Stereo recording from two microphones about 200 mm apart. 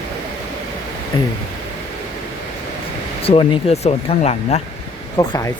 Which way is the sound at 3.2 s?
30° left (ahead or behind).